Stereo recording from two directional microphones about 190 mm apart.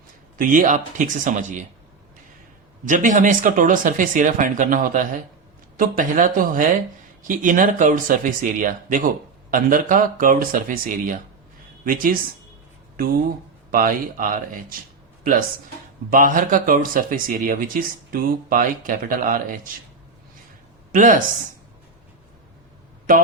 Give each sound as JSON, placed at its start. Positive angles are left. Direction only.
{"t": 0.3, "sound": "speech", "side_deg": -40}
{"t": 2.8, "sound": "speech", "side_deg": -40}
{"t": 13.7, "sound": "speech", "side_deg": -45}
{"t": 20.9, "sound": "speech", "side_deg": -45}